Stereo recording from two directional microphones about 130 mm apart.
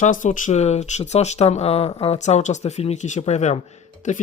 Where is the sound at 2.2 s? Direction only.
60° left (ahead or behind).